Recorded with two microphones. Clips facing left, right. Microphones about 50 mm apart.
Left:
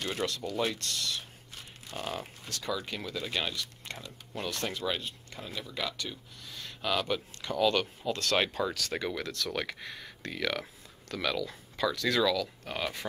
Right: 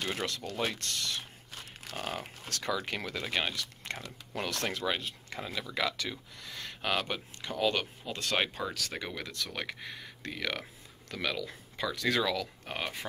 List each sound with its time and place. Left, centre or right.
0.1 s speech: right
2.4 s speech: right
4.5 s speech: right
5.4 s speech: right
6.8 s speech: right
7.4 s speech: centre